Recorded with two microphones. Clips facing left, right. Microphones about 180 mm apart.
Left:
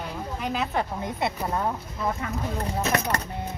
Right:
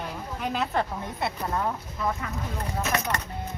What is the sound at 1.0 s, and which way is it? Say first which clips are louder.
Speech: left 3 dB; 15° left (ahead or behind).